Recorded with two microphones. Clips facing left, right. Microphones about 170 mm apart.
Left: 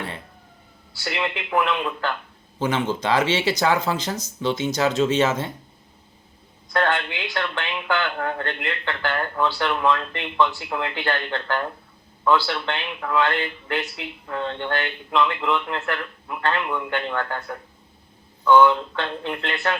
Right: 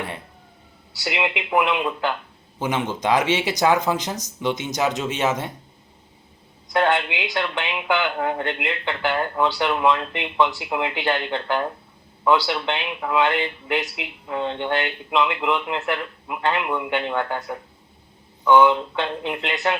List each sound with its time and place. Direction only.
0.9 s speech: 15° right (ahead or behind)
6.7 s speech: 15° right (ahead or behind)